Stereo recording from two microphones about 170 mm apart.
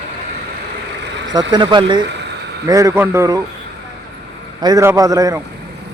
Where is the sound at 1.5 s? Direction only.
25° right (ahead or behind).